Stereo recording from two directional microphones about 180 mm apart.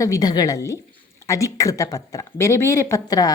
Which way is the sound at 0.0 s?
20° left (ahead or behind).